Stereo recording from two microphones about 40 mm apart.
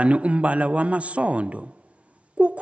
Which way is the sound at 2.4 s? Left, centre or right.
Right.